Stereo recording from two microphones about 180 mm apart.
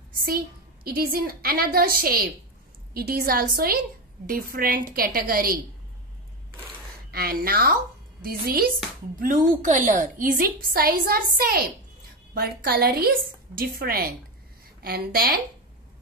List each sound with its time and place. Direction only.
0.1 s a sound: 55° right (ahead or behind)
0.8 s a woman's voice: 55° right (ahead or behind)
7.1 s a woman's voice: 55° right (ahead or behind)